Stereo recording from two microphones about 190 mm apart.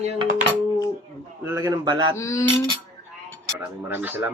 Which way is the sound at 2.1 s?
15° left (ahead or behind).